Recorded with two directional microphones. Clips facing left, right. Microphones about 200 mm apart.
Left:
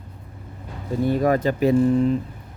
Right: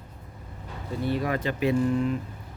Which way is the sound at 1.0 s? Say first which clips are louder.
Left 7 dB; 45° left (ahead or behind).